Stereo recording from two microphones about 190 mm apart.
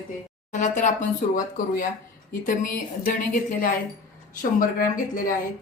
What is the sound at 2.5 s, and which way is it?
Speech, 45° left (ahead or behind).